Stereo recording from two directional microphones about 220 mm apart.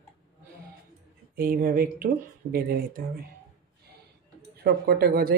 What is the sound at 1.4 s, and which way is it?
Speech, 40° right (ahead or behind).